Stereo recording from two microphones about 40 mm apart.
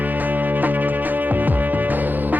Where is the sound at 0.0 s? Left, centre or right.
Right.